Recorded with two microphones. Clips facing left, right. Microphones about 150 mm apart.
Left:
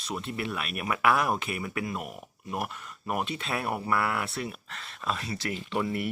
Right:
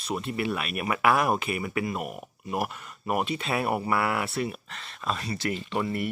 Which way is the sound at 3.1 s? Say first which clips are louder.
Right 4 dB; 5° right (ahead or behind).